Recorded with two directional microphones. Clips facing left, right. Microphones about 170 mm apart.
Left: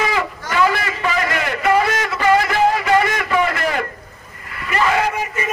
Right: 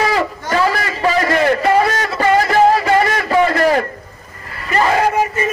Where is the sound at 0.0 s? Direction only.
35° right (ahead or behind).